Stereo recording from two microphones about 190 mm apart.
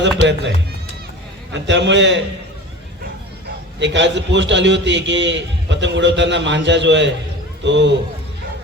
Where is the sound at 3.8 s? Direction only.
70° right (ahead or behind).